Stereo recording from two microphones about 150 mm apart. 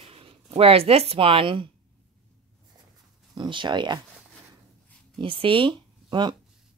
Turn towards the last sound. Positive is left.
turn(degrees=-30)  # may be behind; listen again after turning